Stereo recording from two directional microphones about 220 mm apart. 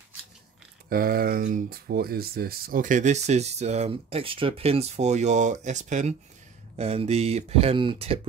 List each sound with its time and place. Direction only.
0.8 s speech: 40° right (ahead or behind); by 8.2 s 25° right (ahead or behind)